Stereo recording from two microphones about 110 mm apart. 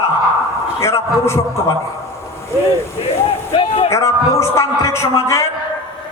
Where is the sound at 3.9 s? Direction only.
25° left (ahead or behind).